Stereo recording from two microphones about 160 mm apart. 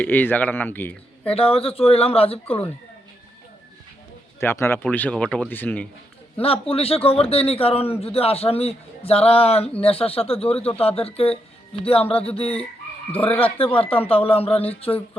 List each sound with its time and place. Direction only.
0.0 s speech: 10° left (ahead or behind)
1.2 s a man's voice: 35° left (ahead or behind)
4.4 s speech: 15° left (ahead or behind)
6.4 s a man's voice: 35° left (ahead or behind)
13.1 s speech: 10° left (ahead or behind)
13.6 s a man's voice: 35° left (ahead or behind)